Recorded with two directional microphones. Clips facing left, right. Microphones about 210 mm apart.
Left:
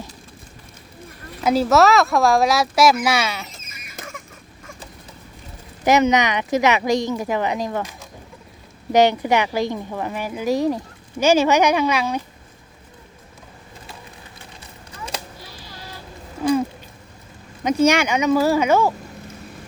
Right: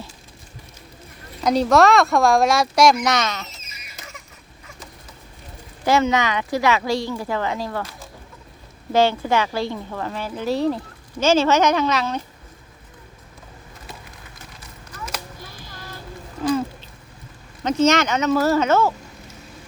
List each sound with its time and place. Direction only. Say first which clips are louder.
1.5 s speech: even; 5° left (ahead or behind)
3.6 s a sound: left 5 dB; 50° left (ahead or behind)
5.8 s a woman's voice: left 2 dB; 20° left (ahead or behind)
17.6 s speech: left 1 dB; 10° left (ahead or behind)